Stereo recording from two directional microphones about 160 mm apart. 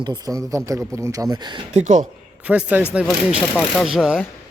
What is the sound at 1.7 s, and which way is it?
Speech, 50° right (ahead or behind).